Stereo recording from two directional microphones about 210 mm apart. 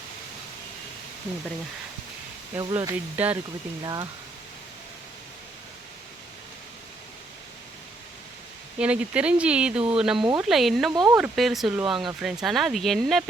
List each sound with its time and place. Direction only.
2.6 s speech: 15° right (ahead or behind)
8.8 s speech: 5° right (ahead or behind)
10.9 s speech: 20° right (ahead or behind)
11.2 s speech: centre (ahead or behind)